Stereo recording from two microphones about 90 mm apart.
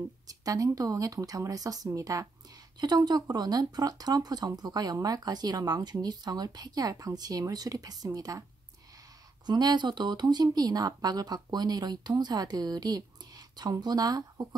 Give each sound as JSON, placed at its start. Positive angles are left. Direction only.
{"t": 0.3, "sound": "speech", "side_deg": -40}
{"t": 2.8, "sound": "speech", "side_deg": -50}
{"t": 9.5, "sound": "speech", "side_deg": -50}